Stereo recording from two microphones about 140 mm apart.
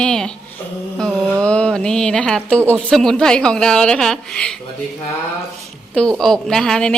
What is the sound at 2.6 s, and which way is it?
A woman's voice, 5° left (ahead or behind).